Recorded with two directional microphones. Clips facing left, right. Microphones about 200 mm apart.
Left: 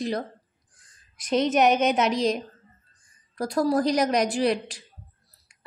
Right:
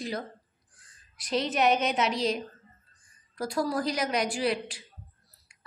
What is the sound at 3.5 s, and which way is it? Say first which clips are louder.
A woman's voice: left 7 dB; 40° left (ahead or behind).